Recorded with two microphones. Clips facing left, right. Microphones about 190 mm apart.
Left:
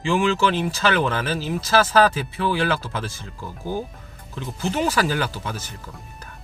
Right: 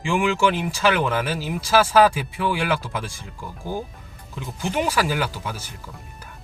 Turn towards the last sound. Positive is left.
turn(degrees=-10)  # may be behind; listen again after turning